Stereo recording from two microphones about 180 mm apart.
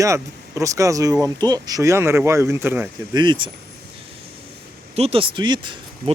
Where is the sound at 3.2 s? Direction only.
25° right (ahead or behind).